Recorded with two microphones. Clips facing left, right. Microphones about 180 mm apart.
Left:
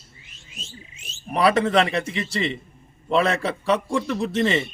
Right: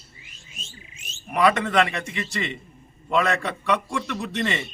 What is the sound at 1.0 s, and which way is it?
A man's voice, 30° left (ahead or behind).